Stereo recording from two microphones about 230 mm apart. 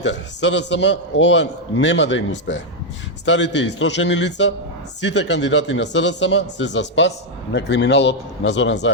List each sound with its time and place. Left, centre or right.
0.0 s a man's voice: left